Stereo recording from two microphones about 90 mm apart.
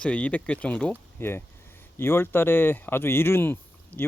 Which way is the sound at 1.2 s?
25° left (ahead or behind).